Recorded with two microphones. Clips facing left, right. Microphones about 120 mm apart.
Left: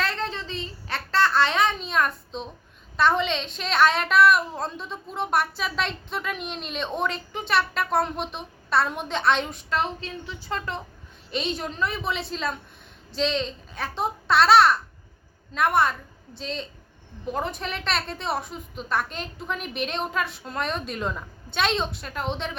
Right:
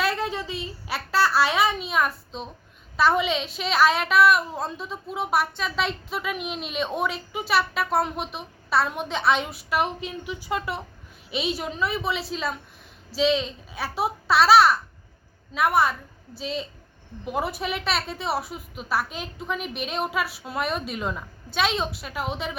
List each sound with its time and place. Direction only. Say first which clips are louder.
0.0 s baby laughter: right 3 dB; 10° right (ahead or behind)
3.0 s a woman's voice: right 1 dB; 5° right (ahead or behind)